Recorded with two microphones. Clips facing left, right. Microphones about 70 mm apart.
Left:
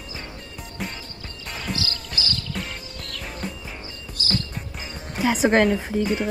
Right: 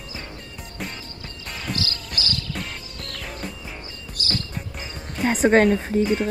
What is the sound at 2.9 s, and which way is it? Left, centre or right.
Music, right.